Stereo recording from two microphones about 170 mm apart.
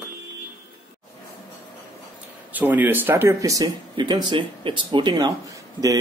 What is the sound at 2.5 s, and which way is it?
Speech, 10° right (ahead or behind).